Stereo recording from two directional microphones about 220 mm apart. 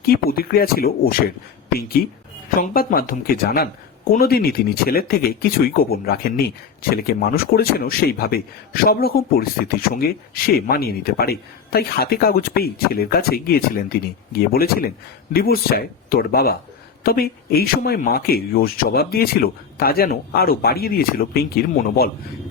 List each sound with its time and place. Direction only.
0.0 s a man's voice: 45° left (ahead or behind)
2.6 s a man's voice: 40° left (ahead or behind)